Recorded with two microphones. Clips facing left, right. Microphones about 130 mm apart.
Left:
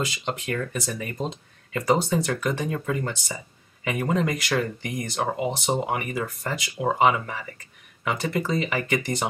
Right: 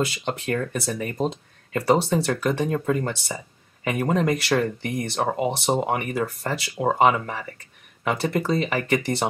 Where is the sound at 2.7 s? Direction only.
45° right (ahead or behind).